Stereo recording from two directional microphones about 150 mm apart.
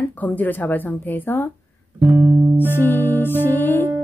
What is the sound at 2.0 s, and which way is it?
Music, 15° right (ahead or behind).